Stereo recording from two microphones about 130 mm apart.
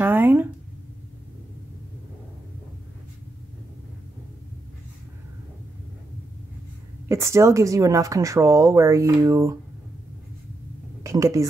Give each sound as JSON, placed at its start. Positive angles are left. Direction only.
{"t": 0.0, "sound": "a sound", "side_deg": -15}
{"t": 7.1, "sound": "a woman's voice", "side_deg": -20}
{"t": 11.1, "sound": "speech", "side_deg": -25}